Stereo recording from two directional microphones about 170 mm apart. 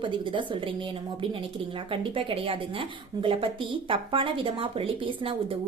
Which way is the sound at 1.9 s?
30° right (ahead or behind).